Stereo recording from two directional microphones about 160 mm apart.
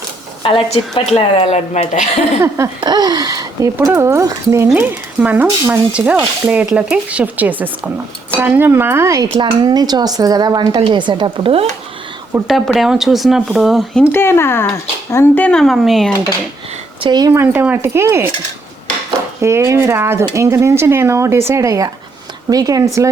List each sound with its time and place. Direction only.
0.4 s a woman's voice: 35° left (ahead or behind)
2.8 s speech: 25° right (ahead or behind)
9.3 s speech: 30° right (ahead or behind)
12.5 s speech: centre (ahead or behind)
14.1 s speech: 15° left (ahead or behind)
17.0 s speech: 25° right (ahead or behind)
17.4 s speech: 10° right (ahead or behind)
19.4 s speech: 15° right (ahead or behind)